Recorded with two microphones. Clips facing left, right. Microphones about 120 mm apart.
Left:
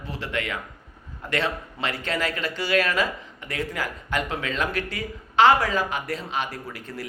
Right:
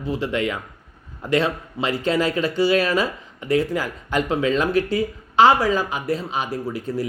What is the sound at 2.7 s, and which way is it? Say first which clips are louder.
A man's voice: right 3 dB; 30° right (ahead or behind).